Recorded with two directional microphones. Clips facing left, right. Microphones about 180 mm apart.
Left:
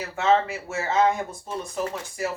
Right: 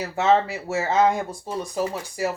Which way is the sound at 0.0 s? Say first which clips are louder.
Right 2 dB; 35° right (ahead or behind).